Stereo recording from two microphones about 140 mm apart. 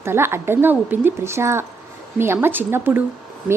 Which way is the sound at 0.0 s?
20° right (ahead or behind).